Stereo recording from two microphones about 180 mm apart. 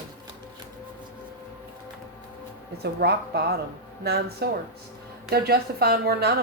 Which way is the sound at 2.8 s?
65° right (ahead or behind).